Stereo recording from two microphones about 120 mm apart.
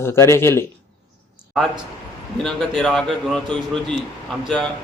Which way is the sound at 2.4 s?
5° left (ahead or behind).